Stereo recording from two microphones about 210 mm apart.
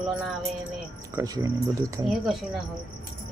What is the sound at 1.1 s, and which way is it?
Speech, 15° right (ahead or behind).